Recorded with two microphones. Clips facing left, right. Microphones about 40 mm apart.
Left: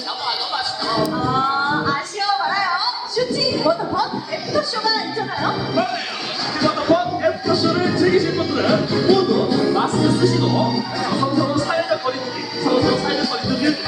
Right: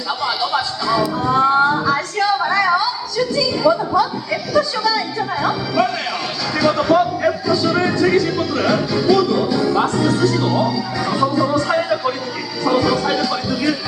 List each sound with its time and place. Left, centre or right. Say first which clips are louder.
0.2 s music: right 4 dB; right
1.3 s music: right 8 dB; right
3.3 s a sound: right 4 dB; right
6.5 s music: right 2 dB; right
7.4 s music: right 1 dB; right
7.7 s music: right 1 dB; right
9.7 s speech: right 1 dB; right
12.7 s music: right 1 dB; right